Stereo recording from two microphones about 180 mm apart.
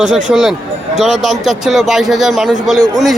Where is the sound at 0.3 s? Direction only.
5° right (ahead or behind).